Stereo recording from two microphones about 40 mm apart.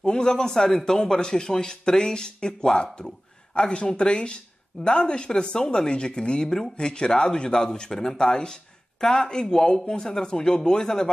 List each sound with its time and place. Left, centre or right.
0.0 s a man's voice: centre